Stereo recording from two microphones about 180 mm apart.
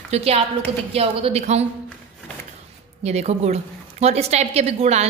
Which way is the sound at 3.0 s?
35° right (ahead or behind).